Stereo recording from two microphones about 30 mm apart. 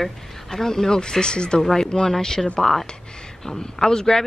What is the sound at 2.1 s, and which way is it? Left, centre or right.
Speech, centre.